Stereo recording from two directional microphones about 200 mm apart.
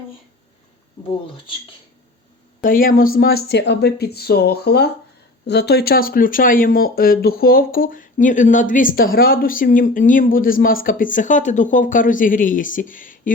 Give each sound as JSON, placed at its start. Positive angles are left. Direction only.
{"t": 2.6, "sound": "speech", "side_deg": 45}